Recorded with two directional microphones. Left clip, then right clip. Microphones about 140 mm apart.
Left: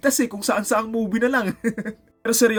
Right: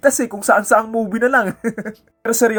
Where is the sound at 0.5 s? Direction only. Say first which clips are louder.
Right 9 dB; 25° left (ahead or behind).